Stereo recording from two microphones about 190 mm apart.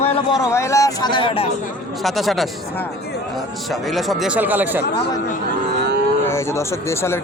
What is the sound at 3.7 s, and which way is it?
Speech, centre (ahead or behind).